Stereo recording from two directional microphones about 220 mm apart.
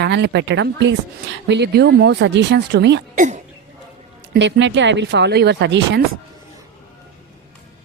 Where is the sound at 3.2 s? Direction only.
35° right (ahead or behind).